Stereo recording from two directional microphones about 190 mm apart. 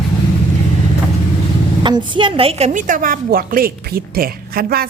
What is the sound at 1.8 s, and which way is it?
A woman's voice, 25° right (ahead or behind).